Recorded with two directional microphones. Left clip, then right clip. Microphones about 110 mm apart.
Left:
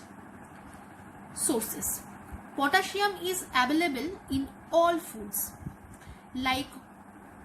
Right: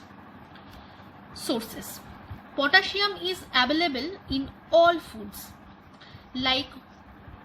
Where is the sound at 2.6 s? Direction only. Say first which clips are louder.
Right 5 dB; 70° right (ahead or behind).